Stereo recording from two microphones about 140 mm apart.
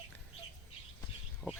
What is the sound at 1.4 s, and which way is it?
Bird, 5° left (ahead or behind).